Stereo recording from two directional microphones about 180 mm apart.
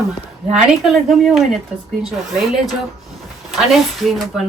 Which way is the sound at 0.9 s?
Centre (ahead or behind).